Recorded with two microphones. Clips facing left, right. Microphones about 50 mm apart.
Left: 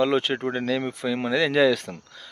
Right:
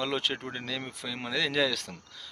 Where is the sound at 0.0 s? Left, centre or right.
Centre.